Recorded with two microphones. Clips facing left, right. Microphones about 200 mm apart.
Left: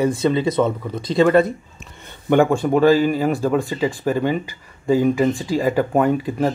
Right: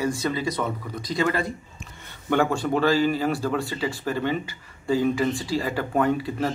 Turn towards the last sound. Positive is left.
turn(degrees=15)  # may be behind; listen again after turning